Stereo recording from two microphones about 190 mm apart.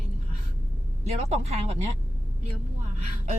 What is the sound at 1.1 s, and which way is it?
Speech, 35° right (ahead or behind).